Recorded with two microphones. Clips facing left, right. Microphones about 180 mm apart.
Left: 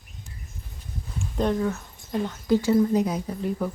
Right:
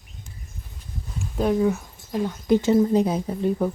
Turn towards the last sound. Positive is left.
turn(degrees=-25)  # may be behind; listen again after turning